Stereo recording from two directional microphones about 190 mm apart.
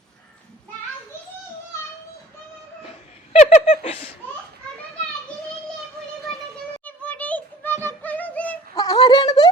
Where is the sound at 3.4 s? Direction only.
35° left (ahead or behind).